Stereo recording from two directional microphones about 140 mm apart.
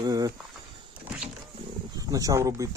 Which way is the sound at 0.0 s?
25° right (ahead or behind).